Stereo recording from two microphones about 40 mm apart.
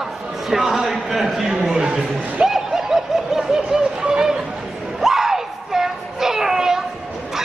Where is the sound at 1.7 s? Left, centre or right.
Right.